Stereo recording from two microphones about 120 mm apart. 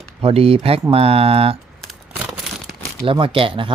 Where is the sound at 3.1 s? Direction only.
45° right (ahead or behind).